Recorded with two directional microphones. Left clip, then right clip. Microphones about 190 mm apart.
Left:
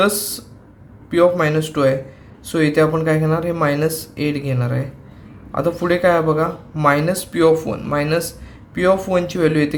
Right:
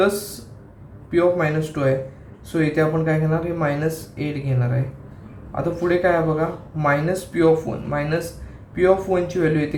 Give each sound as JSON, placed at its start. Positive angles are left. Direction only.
{"t": 1.1, "sound": "speech", "side_deg": 55}